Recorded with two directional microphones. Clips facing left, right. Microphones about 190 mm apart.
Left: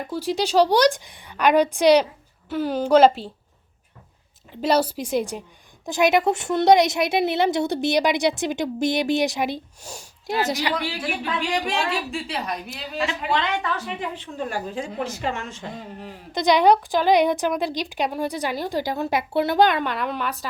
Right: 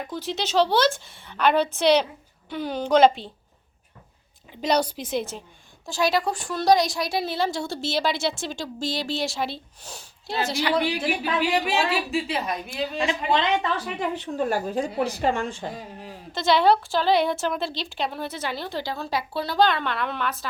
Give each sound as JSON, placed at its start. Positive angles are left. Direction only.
{"t": 0.1, "sound": "a woman's voice", "side_deg": 10}
{"t": 4.6, "sound": "a woman's voice", "side_deg": 5}
{"t": 11.2, "sound": "a woman's voice", "side_deg": -5}
{"t": 13.3, "sound": "a woman's voice", "side_deg": -25}
{"t": 13.8, "sound": "a woman's voice", "side_deg": -40}
{"t": 16.3, "sound": "a woman's voice", "side_deg": 15}